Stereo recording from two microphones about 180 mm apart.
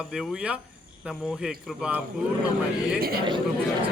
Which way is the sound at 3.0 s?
55° right (ahead or behind).